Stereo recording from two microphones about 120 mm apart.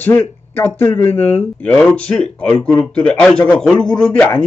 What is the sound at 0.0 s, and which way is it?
A man's voice, 20° left (ahead or behind).